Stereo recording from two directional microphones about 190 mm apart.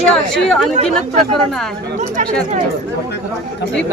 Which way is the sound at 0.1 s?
Centre (ahead or behind).